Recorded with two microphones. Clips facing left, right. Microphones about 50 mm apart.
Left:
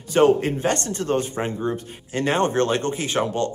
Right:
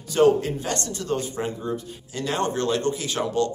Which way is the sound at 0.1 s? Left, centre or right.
Left.